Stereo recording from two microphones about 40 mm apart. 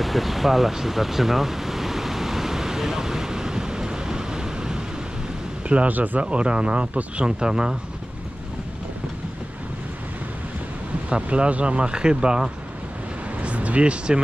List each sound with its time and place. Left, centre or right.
0.0 s waves: centre
5.9 s speech: right
6.2 s speech: right
7.2 s speech: centre
11.1 s speech: right
13.4 s a sound: right